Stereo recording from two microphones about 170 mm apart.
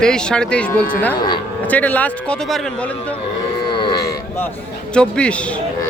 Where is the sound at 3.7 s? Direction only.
25° left (ahead or behind).